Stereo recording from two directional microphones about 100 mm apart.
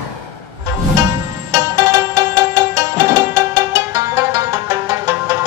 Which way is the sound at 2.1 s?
30° right (ahead or behind).